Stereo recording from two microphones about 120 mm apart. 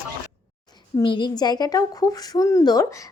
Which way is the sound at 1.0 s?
40° left (ahead or behind).